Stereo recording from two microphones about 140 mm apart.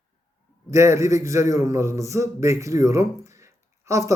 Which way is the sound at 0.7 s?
20° right (ahead or behind).